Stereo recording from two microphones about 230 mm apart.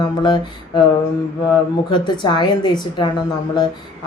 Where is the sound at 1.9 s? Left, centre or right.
Centre.